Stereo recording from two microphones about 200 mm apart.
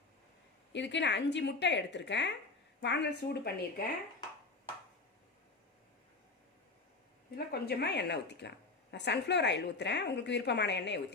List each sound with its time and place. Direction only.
0.7 s a woman's voice: 60° left (ahead or behind)
7.3 s a woman's voice: 50° left (ahead or behind)